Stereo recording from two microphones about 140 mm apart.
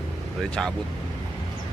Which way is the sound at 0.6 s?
5° left (ahead or behind).